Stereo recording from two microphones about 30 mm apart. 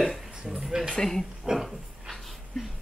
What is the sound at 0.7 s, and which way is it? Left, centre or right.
Speech, right.